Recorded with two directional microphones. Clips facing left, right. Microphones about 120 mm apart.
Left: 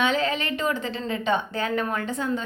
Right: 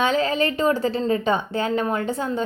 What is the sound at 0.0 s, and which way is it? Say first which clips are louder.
A woman's voice: right 4 dB; 35° right (ahead or behind).